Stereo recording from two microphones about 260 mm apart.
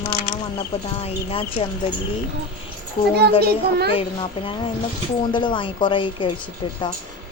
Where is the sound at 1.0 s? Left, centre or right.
Left.